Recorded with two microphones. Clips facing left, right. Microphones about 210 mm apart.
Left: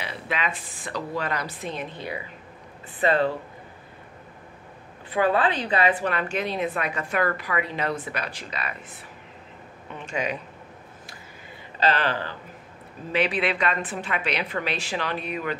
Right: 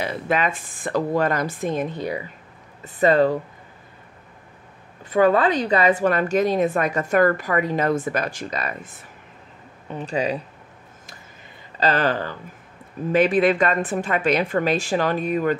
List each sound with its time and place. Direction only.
0.0 s a woman's voice: 45° right (ahead or behind)
5.1 s a woman's voice: 45° right (ahead or behind)
11.8 s a woman's voice: 45° right (ahead or behind)